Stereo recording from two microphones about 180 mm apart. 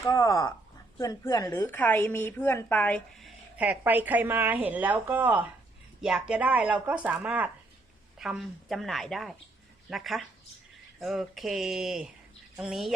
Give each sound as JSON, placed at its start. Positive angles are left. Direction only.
{"t": 0.0, "sound": "a woman's voice", "side_deg": 15}